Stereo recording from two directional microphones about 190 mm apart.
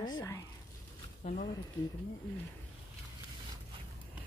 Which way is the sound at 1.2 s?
35° left (ahead or behind).